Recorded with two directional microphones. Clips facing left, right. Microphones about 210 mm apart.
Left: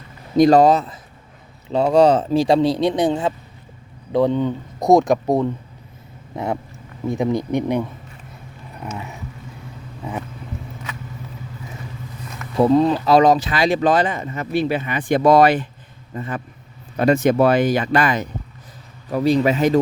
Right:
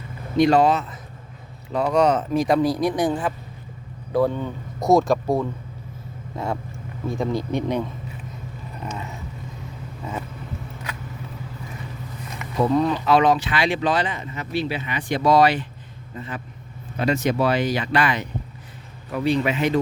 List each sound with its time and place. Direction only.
0.3 s a man's voice: 40° left (ahead or behind); by 7.9 s 15° left (ahead or behind)
10.0 s speech: 15° left (ahead or behind)
12.6 s a man's voice: 30° left (ahead or behind)